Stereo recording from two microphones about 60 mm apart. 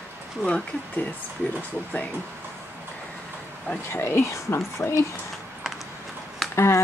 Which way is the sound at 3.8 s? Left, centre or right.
Left.